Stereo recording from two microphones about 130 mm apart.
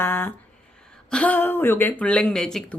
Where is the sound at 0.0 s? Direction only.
15° left (ahead or behind).